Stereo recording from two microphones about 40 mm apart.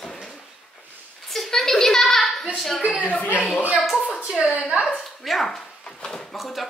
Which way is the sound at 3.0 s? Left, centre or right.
Left.